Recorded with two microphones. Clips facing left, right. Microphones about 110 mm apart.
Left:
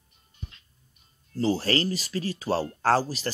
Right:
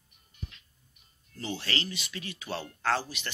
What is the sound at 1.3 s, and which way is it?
Speech, 35° left (ahead or behind).